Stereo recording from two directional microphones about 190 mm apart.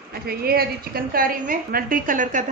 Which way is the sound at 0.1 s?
55° right (ahead or behind).